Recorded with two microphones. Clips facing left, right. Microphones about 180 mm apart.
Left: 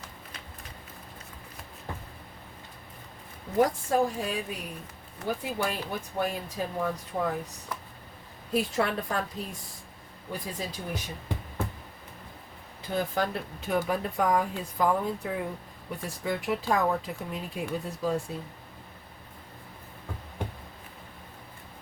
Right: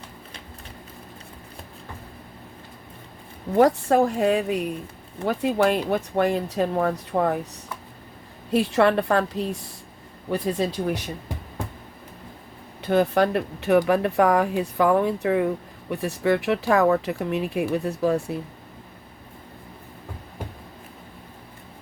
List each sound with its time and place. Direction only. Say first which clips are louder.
3.6 s speech: right 6 dB; 70° right (ahead or behind)
8.5 s speech: right 8 dB; 75° right (ahead or behind)
12.8 s speech: right 9 dB; 70° right (ahead or behind)